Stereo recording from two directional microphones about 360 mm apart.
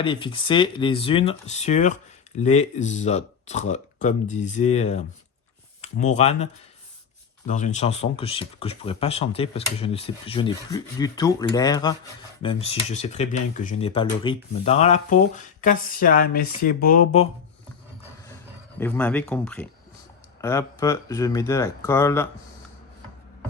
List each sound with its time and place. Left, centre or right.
0.0 s speech: centre
18.8 s speech: centre